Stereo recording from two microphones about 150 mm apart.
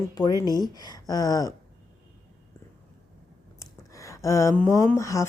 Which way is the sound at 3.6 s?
20° left (ahead or behind).